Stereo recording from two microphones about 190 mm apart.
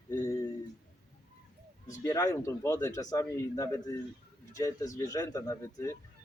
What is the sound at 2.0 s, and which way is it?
Speech, 15° left (ahead or behind).